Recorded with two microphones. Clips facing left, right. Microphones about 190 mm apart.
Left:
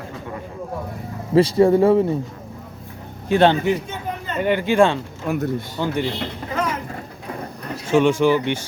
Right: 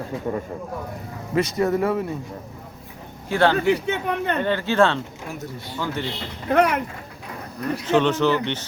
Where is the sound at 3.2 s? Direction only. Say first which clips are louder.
Left 3 dB; 20° left (ahead or behind).